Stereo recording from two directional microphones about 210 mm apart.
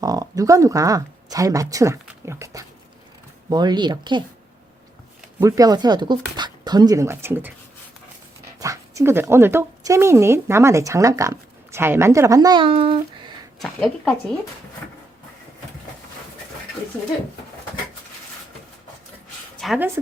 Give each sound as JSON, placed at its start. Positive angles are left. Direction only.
{"t": 0.0, "sound": "speech", "side_deg": -15}
{"t": 5.4, "sound": "speech", "side_deg": -15}
{"t": 8.5, "sound": "speech", "side_deg": -15}
{"t": 13.6, "sound": "speech", "side_deg": 0}
{"t": 19.5, "sound": "speech", "side_deg": 0}